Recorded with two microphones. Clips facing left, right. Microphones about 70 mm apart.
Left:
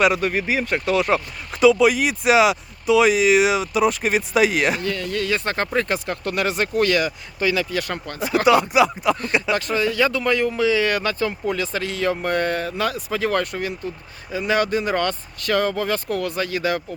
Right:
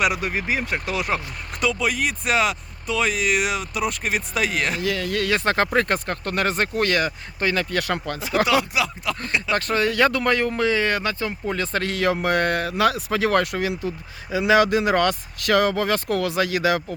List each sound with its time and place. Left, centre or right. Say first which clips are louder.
0.0 s speech: left 4 dB; centre
4.8 s speech: right 1 dB; right
6.1 s speech: left 1 dB; right
8.4 s speech: left 6 dB; left
9.6 s speech: even; right
10.5 s speech: left 2 dB; right
10.8 s speech: left 2 dB; right
11.5 s speech: even; right